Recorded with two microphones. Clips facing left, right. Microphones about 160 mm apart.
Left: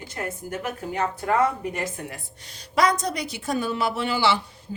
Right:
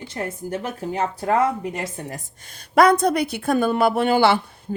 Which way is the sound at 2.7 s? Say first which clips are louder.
Right 7 dB; 55° right (ahead or behind).